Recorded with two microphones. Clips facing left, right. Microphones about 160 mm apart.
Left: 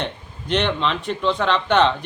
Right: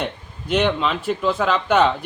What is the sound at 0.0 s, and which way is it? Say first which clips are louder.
Speech: right 1 dB; 5° right (ahead or behind).